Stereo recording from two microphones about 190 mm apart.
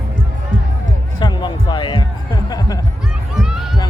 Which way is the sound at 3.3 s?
Centre (ahead or behind).